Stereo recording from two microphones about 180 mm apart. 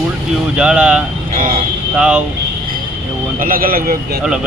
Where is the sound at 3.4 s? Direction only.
50° right (ahead or behind).